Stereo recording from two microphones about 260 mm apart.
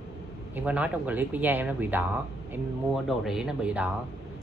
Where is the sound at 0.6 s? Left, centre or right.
Centre.